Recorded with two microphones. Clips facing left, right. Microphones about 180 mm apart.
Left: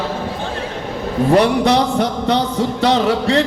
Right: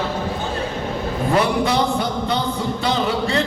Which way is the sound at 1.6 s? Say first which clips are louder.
Left 4 dB; 75° left (ahead or behind).